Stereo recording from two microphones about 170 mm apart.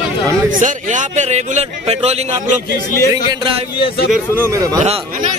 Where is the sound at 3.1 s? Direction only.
25° right (ahead or behind).